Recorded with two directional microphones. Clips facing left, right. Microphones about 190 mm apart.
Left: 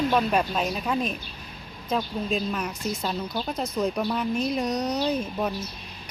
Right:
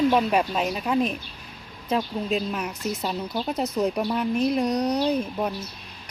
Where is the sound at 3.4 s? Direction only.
20° right (ahead or behind).